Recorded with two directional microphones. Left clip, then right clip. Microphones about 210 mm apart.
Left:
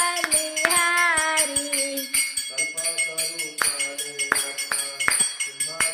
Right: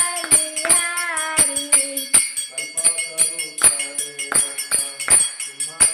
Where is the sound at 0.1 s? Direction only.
25° left (ahead or behind).